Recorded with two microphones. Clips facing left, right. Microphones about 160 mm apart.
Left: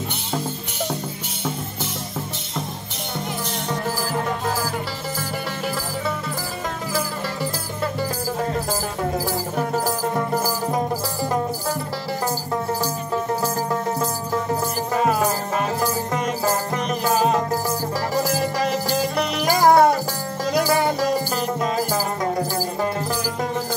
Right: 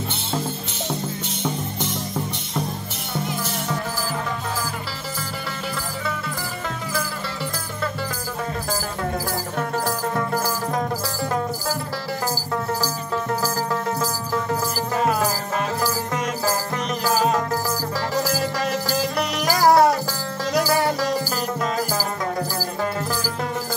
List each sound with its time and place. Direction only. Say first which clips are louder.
9.6 s music: left 2 dB; 15° left (ahead or behind)
13.1 s music: left 1 dB; 20° left (ahead or behind)
15.0 s music: left 1 dB; centre (ahead or behind)
16.4 s music: left 2 dB; centre (ahead or behind)
22.2 s music: left 3 dB; 20° left (ahead or behind)